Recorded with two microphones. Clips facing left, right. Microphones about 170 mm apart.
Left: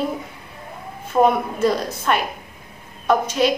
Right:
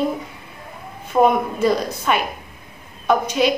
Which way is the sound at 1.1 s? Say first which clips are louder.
Right 1 dB; 5° right (ahead or behind).